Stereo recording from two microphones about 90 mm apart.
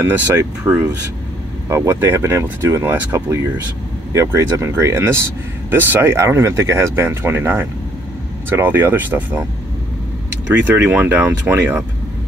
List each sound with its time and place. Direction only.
0.0 s speech: 25° right (ahead or behind)
11.0 s speech: 25° right (ahead or behind)